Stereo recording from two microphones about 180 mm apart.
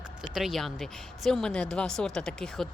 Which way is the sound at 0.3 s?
Centre (ahead or behind).